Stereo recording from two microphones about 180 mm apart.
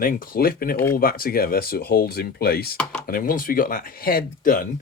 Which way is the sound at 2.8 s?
5° left (ahead or behind).